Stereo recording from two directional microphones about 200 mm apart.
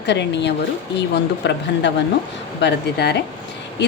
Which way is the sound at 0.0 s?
60° left (ahead or behind).